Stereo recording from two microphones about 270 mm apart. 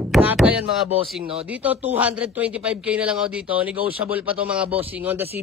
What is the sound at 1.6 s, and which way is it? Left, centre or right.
A man's voice, centre.